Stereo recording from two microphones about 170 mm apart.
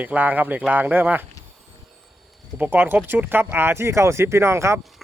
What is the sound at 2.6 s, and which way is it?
Speech, 10° right (ahead or behind).